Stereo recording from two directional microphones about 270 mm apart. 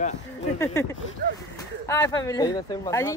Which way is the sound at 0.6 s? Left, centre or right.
Centre.